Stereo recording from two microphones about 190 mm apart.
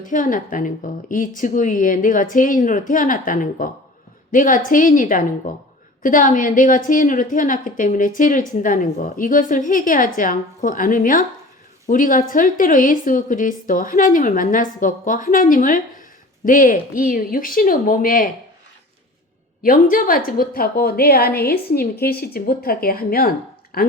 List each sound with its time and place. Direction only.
0.0 s a woman's voice: 45° left (ahead or behind)
19.6 s a woman's voice: 45° left (ahead or behind)